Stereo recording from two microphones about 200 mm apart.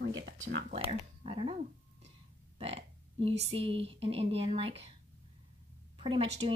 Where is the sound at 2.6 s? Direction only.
30° right (ahead or behind).